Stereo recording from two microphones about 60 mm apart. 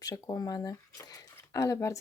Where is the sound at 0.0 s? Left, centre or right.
Left.